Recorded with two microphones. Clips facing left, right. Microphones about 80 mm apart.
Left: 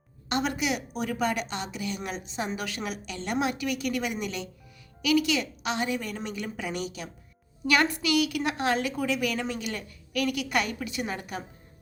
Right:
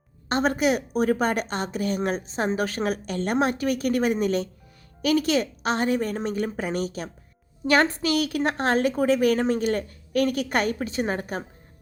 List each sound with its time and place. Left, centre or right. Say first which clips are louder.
0.3 s a woman's voice: right 6 dB; right